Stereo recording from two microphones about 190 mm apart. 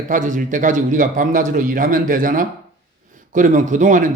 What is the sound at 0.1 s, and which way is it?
A man's voice, 40° right (ahead or behind).